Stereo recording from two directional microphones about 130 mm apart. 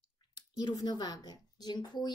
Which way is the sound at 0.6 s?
30° left (ahead or behind).